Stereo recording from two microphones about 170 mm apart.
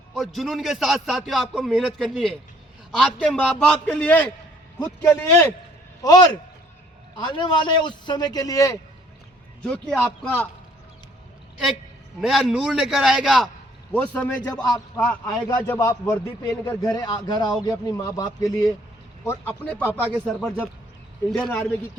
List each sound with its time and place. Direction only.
0.1 s a man's voice: centre (ahead or behind)
6.0 s a man's voice: 25° left (ahead or behind)
9.6 s a man's voice: 5° left (ahead or behind)
12.2 s a man's voice: centre (ahead or behind)
16.6 s a man's voice: 25° left (ahead or behind); by 21.6 s 5° left (ahead or behind)